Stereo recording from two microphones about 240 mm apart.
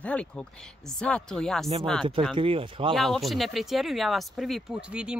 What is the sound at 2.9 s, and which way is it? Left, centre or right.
Speech, centre.